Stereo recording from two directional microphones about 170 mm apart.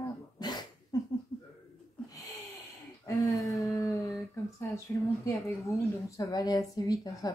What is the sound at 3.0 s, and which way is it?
A woman's voice, 20° left (ahead or behind).